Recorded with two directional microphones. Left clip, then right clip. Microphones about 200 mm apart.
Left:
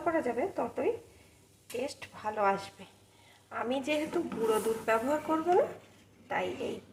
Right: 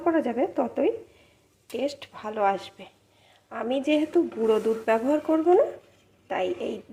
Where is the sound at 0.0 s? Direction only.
40° right (ahead or behind).